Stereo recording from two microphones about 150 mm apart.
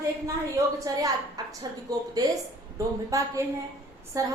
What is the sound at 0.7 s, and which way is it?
Speech, 25° right (ahead or behind).